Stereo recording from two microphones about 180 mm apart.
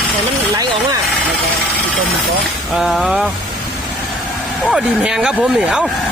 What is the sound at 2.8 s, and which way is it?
Speech, centre (ahead or behind).